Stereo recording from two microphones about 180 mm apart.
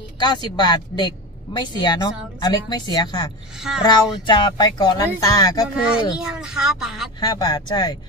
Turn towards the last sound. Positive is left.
turn(degrees=25)  # may be behind; listen again after turning